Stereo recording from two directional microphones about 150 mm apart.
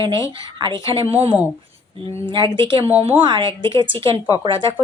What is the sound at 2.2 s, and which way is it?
Speech, 30° right (ahead or behind).